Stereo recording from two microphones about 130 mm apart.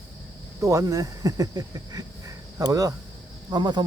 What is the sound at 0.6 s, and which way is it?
Speech, 25° right (ahead or behind).